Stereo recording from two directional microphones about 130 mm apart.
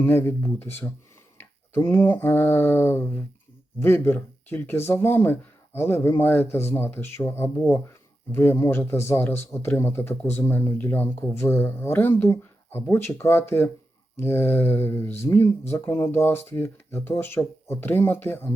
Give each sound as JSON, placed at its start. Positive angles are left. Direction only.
{"t": 0.0, "sound": "a man's voice", "side_deg": 15}
{"t": 1.4, "sound": "a sound", "side_deg": 20}
{"t": 3.8, "sound": "a man's voice", "side_deg": 20}